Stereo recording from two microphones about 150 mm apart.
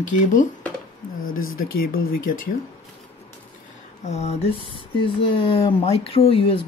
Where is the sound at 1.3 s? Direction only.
75° left (ahead or behind).